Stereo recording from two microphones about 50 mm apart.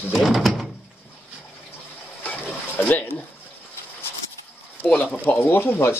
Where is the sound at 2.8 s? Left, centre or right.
Left.